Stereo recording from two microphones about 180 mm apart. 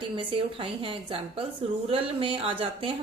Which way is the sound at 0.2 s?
30° right (ahead or behind).